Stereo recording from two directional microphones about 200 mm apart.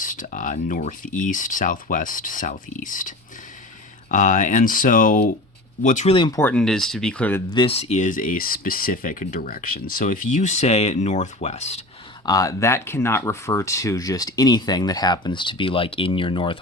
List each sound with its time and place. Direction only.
0.0 s speech: 40° left (ahead or behind); by 6.4 s 25° left (ahead or behind)
6.4 s speech: 5° left (ahead or behind)
7.5 s speech: 25° left (ahead or behind)
12.2 s speech: 15° left (ahead or behind)